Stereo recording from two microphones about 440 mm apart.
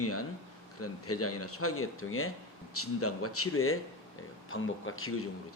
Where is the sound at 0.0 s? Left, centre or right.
Left.